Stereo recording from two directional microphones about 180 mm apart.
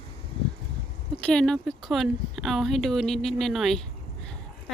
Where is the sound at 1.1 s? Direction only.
5° left (ahead or behind).